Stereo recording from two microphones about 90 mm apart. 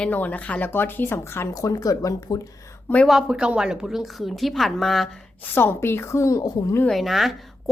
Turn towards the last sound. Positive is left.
turn(degrees=0)  # may be behind; listen again after turning